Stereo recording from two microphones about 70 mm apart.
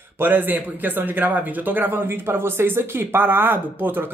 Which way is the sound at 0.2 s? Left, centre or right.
Right.